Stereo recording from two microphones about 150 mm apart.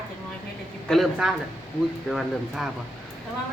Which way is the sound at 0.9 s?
Centre (ahead or behind).